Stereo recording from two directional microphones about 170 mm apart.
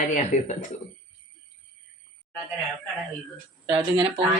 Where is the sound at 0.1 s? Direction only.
45° left (ahead or behind).